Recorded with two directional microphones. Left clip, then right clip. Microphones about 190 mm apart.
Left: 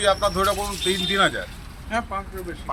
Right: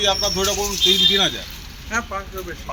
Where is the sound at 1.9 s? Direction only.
60° left (ahead or behind).